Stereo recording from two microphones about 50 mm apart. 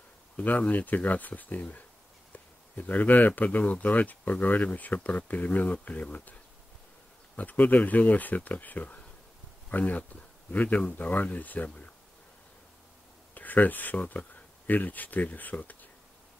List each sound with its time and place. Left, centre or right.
0.4 s speech: left
7.3 s speech: left
13.3 s speech: left